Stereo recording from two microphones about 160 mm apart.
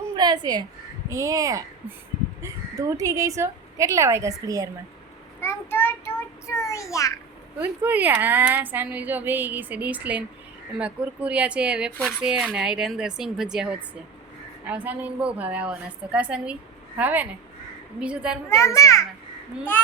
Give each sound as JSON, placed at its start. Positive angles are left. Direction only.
{"t": 0.2, "sound": "a woman's voice", "side_deg": -25}
{"t": 5.4, "sound": "a child's voice", "side_deg": 15}
{"t": 7.6, "sound": "a woman's voice", "side_deg": -10}
{"t": 18.4, "sound": "a child's voice", "side_deg": 15}